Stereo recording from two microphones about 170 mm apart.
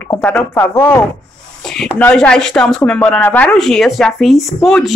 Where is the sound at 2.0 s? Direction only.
5° left (ahead or behind).